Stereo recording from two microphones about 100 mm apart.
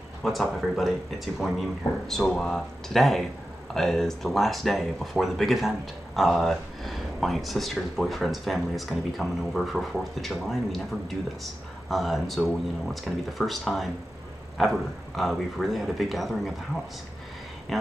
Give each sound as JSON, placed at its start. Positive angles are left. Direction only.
{"t": 0.2, "sound": "speech", "side_deg": 0}
{"t": 11.9, "sound": "speech", "side_deg": 0}